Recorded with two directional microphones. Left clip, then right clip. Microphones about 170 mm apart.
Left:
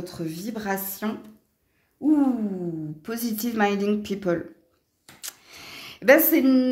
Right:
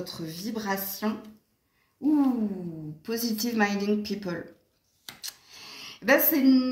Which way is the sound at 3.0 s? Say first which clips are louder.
Even; 50° left (ahead or behind).